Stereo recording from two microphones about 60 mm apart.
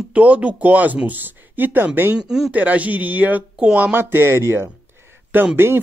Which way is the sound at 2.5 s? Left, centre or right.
Right.